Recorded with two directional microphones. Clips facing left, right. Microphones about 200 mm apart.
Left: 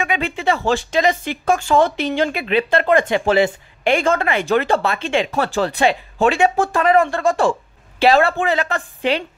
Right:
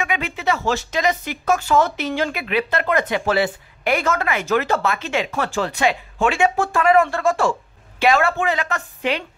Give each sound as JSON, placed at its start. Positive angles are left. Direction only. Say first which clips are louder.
{"t": 0.0, "sound": "a woman's voice", "louder": "left 3 dB", "side_deg": 30}